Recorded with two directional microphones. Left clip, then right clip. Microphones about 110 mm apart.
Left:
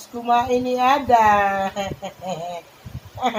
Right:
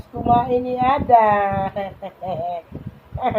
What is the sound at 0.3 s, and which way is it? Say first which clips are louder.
Speech: right 1 dB; 30° left (ahead or behind).